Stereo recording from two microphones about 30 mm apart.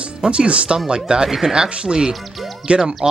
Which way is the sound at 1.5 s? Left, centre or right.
Right.